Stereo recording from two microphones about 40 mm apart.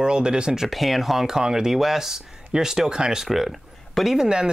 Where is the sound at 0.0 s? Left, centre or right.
Right.